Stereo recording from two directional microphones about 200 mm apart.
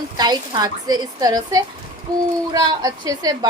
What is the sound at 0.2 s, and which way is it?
A woman's voice, 20° right (ahead or behind).